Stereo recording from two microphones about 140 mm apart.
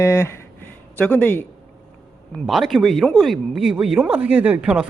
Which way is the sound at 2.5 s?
Centre (ahead or behind).